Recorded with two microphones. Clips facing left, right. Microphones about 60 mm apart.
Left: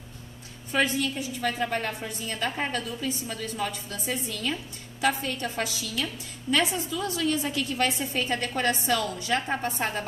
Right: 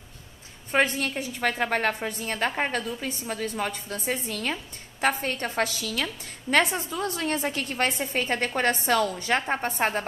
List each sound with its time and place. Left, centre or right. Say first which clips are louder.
0.7 s a woman's voice: right 2 dB; right